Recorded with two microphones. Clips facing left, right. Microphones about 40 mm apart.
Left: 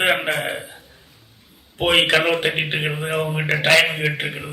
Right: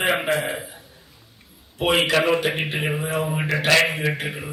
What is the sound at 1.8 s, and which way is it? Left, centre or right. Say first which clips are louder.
A man's voice: left 2 dB; left.